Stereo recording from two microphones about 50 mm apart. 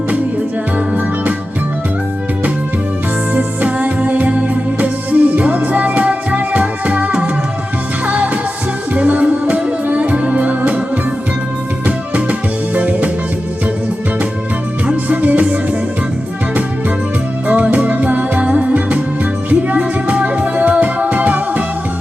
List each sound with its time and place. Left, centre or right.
3.3 s music: right
11.9 s music: right
15.1 s music: right
17.5 s music: right